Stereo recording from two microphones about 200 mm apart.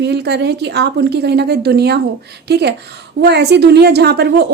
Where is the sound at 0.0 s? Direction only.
55° right (ahead or behind).